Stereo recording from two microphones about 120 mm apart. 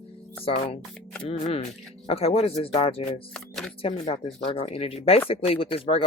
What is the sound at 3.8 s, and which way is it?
Speech, 55° left (ahead or behind).